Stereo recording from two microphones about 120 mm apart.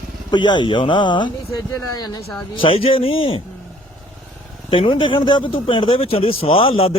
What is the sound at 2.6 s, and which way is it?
Speech, 50° left (ahead or behind).